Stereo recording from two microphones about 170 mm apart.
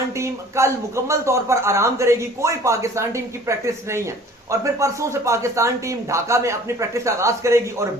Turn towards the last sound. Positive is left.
turn(degrees=-15)  # may be behind; listen again after turning